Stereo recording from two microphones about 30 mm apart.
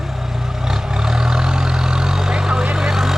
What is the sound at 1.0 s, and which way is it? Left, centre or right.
Vehicle, right.